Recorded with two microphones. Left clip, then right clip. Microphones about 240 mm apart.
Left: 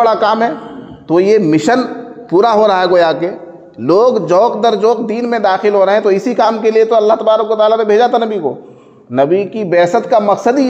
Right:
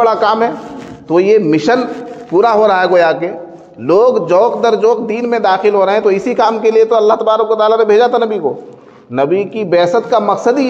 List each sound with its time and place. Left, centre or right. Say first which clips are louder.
0.0 s a man's voice: even; left